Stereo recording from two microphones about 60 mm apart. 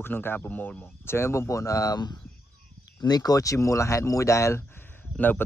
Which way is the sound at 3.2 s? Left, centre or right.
Left.